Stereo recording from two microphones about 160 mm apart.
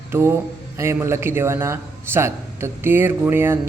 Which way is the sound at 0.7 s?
15° right (ahead or behind).